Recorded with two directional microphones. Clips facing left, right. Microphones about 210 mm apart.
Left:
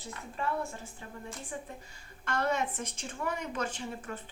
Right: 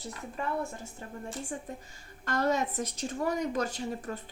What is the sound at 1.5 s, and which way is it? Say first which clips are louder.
A woman's voice: right 3 dB; 40° right (ahead or behind).